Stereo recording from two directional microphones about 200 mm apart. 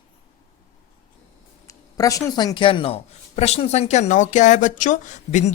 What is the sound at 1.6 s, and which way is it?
A man's voice, 15° left (ahead or behind).